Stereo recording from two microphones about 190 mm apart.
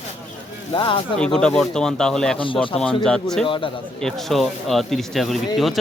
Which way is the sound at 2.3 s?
25° left (ahead or behind).